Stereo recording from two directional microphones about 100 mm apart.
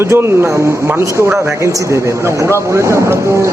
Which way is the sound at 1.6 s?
30° right (ahead or behind).